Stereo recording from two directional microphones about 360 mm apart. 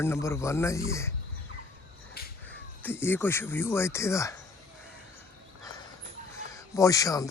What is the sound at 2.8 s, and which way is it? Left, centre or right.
Speech, centre.